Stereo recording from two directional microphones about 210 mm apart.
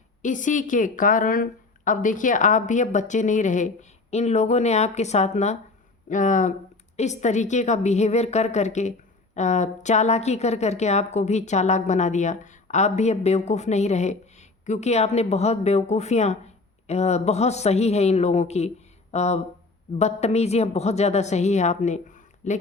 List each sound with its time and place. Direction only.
0.2 s a woman's voice: 35° left (ahead or behind)